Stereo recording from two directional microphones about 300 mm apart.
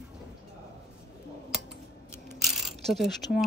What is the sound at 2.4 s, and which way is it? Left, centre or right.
Coin, centre.